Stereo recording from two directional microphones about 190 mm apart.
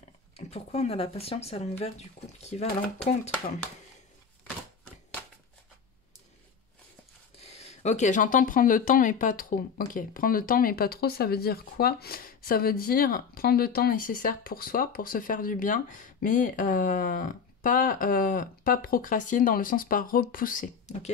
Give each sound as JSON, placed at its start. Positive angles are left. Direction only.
{"t": 0.4, "sound": "speech", "side_deg": 35}
{"t": 7.3, "sound": "speech", "side_deg": 35}